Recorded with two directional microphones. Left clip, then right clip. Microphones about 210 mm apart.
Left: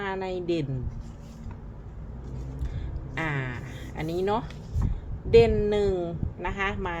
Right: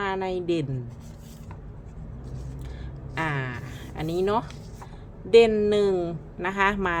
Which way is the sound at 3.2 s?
5° right (ahead or behind).